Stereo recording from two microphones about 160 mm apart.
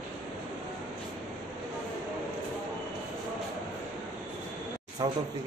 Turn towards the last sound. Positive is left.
turn(degrees=-25)  # may be behind; listen again after turning